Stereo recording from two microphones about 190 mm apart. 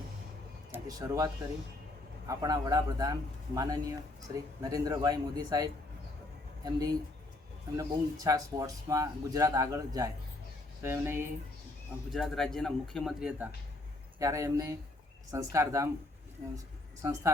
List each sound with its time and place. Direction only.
0.7 s speech: 20° right (ahead or behind)
6.7 s speech: 20° right (ahead or behind)
12.1 s speech: centre (ahead or behind)
14.2 s a woman's voice: 15° right (ahead or behind)